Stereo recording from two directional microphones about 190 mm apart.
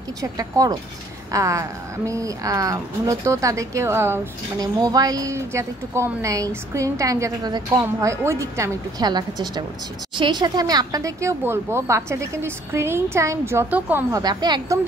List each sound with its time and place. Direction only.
0.2 s speech: 20° right (ahead or behind)